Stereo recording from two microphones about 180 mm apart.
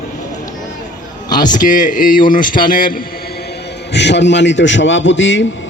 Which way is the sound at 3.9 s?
75° left (ahead or behind).